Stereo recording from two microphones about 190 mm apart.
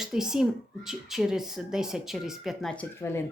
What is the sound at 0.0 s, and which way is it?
A woman's voice, 5° right (ahead or behind).